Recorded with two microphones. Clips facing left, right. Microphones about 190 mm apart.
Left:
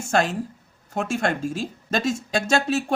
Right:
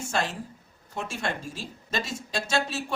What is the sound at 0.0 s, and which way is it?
A woman's voice, 50° left (ahead or behind).